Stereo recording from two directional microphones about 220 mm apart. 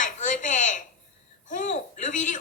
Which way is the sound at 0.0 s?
35° left (ahead or behind).